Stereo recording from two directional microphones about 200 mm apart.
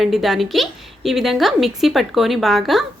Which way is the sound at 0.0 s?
Centre (ahead or behind).